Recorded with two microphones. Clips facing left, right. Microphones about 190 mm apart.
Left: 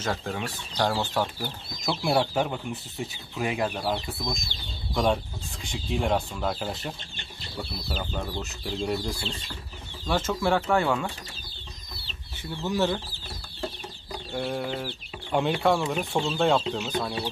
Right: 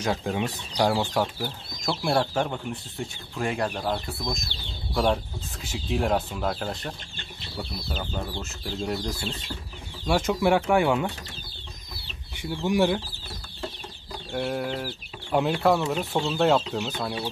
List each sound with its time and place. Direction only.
0.0 s speech: 15° right (ahead or behind)
1.8 s speech: centre (ahead or behind)
10.0 s speech: 10° right (ahead or behind)
12.6 s speech: 15° right (ahead or behind)
14.3 s speech: 5° right (ahead or behind)